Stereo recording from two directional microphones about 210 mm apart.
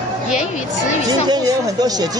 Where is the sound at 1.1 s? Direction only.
20° right (ahead or behind).